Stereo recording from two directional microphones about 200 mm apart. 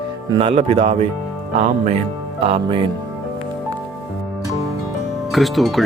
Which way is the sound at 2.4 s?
25° right (ahead or behind).